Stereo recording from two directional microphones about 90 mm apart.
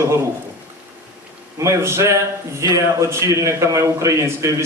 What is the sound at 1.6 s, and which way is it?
A man's voice, 30° right (ahead or behind).